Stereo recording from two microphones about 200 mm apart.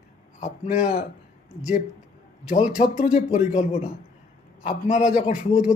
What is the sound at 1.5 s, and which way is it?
Speech, 5° right (ahead or behind).